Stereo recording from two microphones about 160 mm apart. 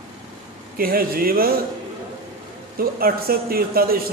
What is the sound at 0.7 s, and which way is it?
Speech, 70° right (ahead or behind).